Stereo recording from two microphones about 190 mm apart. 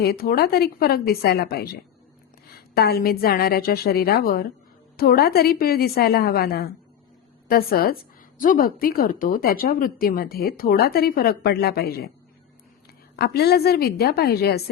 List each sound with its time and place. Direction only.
0.0 s a woman's voice: 55° left (ahead or behind)
13.1 s a woman's voice: 55° left (ahead or behind)